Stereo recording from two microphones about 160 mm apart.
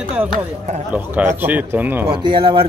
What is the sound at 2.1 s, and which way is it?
Speech, 30° right (ahead or behind).